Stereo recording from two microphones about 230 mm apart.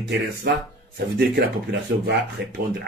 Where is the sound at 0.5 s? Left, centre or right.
Right.